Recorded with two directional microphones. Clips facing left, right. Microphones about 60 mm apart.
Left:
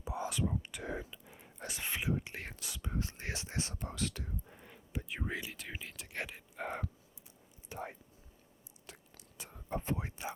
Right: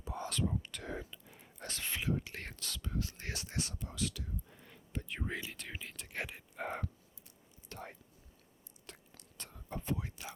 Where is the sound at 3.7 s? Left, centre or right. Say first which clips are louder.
Left 1 dB; left.